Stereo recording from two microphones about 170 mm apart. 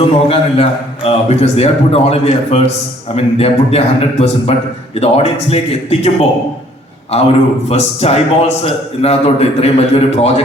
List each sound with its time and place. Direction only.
0.3 s a man's voice: 35° left (ahead or behind)